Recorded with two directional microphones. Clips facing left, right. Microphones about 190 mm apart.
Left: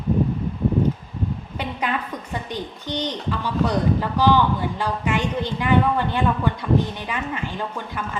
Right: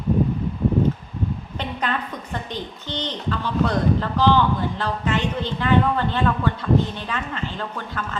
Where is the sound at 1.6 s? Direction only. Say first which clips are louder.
Left 1 dB; 10° left (ahead or behind).